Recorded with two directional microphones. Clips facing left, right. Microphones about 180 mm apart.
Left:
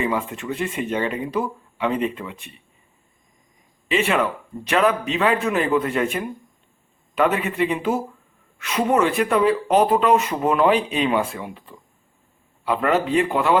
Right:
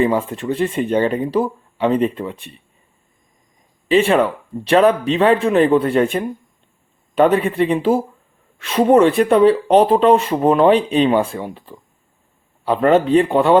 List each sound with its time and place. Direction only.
0.0 s speech: 35° right (ahead or behind)
3.8 s speech: 35° right (ahead or behind)